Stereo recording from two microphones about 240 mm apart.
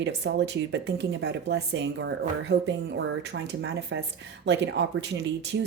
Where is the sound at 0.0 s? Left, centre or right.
Right.